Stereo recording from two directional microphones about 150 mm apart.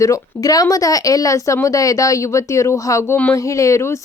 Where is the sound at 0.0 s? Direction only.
20° left (ahead or behind).